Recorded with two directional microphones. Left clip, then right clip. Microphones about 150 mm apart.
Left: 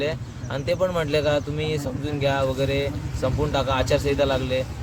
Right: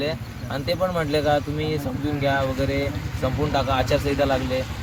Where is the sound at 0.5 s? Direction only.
30° left (ahead or behind).